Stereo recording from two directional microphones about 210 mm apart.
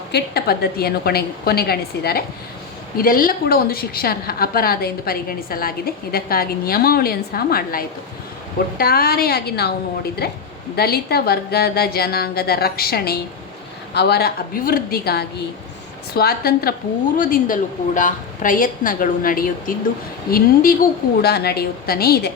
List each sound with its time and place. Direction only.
0.1 s a woman's voice: 50° left (ahead or behind)